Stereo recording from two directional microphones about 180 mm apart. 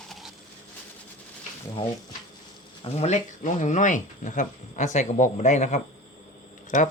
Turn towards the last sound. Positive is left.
turn(degrees=45)  # may be behind; listen again after turning